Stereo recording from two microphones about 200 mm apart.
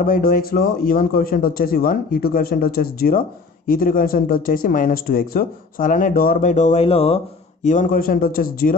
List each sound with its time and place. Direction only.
0.0 s a man's voice: 45° left (ahead or behind); by 7.2 s 30° left (ahead or behind)
7.6 s a man's voice: 40° left (ahead or behind)